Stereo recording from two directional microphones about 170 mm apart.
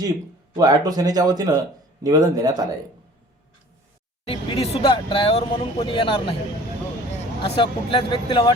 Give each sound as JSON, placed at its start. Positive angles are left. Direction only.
{"t": 0.5, "sound": "speech", "side_deg": -20}
{"t": 4.3, "sound": "speech", "side_deg": 35}
{"t": 7.4, "sound": "speech", "side_deg": 30}